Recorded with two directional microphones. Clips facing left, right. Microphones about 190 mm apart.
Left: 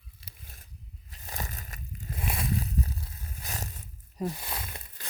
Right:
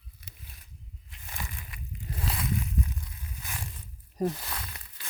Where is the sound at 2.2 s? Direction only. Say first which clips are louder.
Even; 25° left (ahead or behind); by 3.6 s 40° left (ahead or behind).